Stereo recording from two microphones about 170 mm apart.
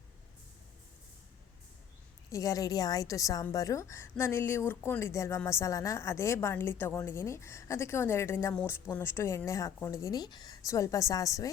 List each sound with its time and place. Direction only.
2.3 s a woman's voice: 20° left (ahead or behind)